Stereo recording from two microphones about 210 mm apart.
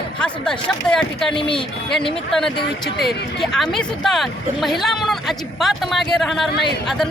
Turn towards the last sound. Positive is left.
turn(degrees=0)  # may be behind; listen again after turning